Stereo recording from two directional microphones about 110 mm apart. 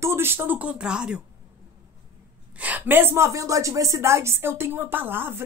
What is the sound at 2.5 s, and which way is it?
A woman's voice, 15° right (ahead or behind).